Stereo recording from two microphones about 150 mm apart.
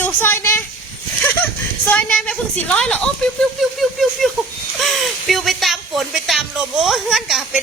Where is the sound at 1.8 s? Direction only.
10° left (ahead or behind).